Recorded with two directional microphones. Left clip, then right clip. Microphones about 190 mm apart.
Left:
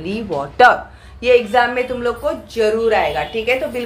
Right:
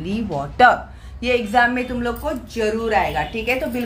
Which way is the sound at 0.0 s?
15° right (ahead or behind).